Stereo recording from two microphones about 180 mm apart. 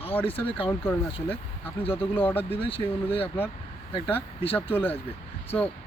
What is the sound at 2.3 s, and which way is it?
Speech, 10° left (ahead or behind).